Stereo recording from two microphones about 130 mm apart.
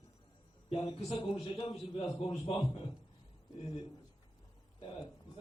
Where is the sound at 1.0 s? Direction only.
50° left (ahead or behind).